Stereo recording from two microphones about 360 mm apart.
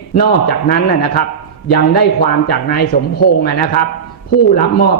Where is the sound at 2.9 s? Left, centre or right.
Left.